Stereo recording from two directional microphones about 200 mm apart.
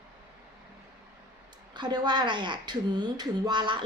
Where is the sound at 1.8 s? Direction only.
20° right (ahead or behind).